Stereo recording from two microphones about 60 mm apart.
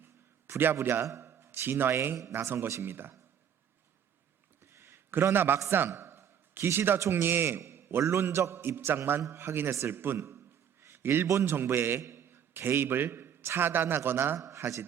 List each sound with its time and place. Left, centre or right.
0.0 s a sound: right
1.8 s a man's voice: right
4.6 s a sound: right
5.3 s a man's voice: right
7.8 s a sound: right
8.0 s a man's voice: right
9.2 s a man's voice: right
9.9 s a man's voice: right
10.2 s a sound: right
11.3 s a man's voice: right
11.5 s a man's voice: right
14.3 s a man's voice: right